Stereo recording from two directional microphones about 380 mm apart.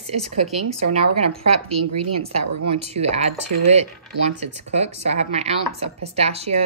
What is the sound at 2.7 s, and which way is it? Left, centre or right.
Speech, centre.